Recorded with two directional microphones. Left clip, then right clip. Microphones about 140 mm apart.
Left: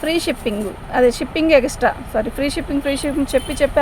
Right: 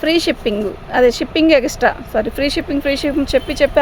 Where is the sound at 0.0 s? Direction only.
60° right (ahead or behind).